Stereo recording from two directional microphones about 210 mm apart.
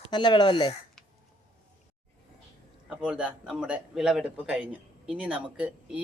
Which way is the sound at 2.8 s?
5° right (ahead or behind).